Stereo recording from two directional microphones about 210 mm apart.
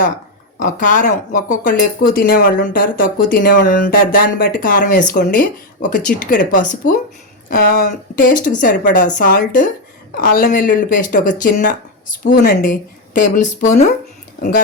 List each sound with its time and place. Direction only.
0.6 s speech: 40° left (ahead or behind)